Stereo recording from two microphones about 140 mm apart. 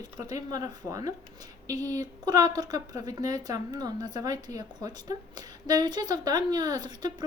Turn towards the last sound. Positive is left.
turn(degrees=-30)  # may be behind; listen again after turning